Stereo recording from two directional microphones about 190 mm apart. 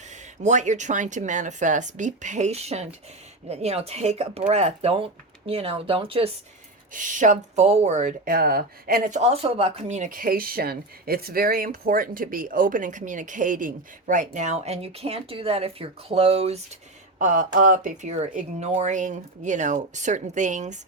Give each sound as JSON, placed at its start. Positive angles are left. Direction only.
{"t": 0.4, "sound": "speech", "side_deg": -40}
{"t": 6.9, "sound": "speech", "side_deg": -45}